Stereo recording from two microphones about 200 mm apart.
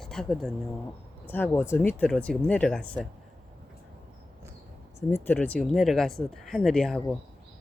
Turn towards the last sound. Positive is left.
turn(degrees=5)  # may be behind; listen again after turning